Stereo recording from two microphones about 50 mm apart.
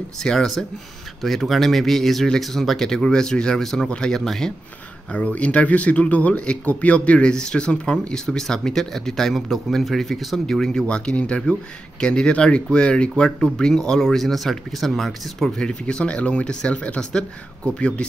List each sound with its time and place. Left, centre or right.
0.2 s speech: centre
5.1 s a man's voice: left; by 15.6 s centre
15.6 s a man's voice: centre